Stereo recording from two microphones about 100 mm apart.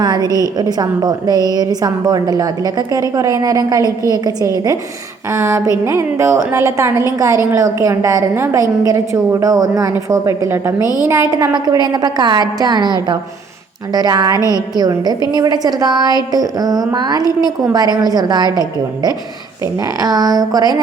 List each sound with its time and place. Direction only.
0.0 s a woman's voice: 45° right (ahead or behind); by 11.3 s 25° right (ahead or behind)
11.3 s a woman's voice: 40° right (ahead or behind)